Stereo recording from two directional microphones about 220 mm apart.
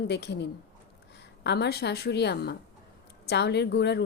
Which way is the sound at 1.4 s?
50° left (ahead or behind).